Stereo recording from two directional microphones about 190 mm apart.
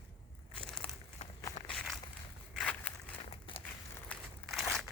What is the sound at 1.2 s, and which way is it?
Walk, 35° left (ahead or behind).